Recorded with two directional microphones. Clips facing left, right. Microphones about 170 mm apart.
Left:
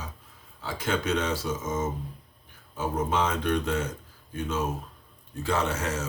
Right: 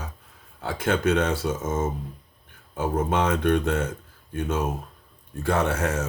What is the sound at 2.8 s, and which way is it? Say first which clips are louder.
Speech: right 3 dB; 55° right (ahead or behind).